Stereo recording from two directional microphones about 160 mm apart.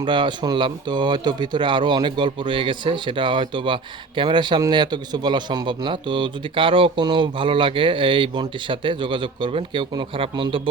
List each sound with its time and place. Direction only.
0.0 s speech: 30° right (ahead or behind)